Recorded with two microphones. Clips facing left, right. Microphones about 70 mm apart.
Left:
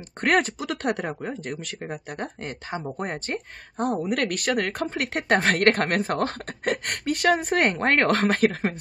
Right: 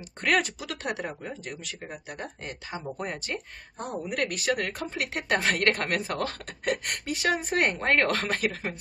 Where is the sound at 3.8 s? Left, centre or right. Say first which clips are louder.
Left 6 dB; left.